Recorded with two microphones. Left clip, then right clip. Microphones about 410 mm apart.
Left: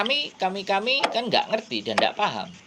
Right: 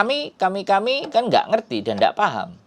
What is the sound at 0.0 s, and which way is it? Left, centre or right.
Speech, right.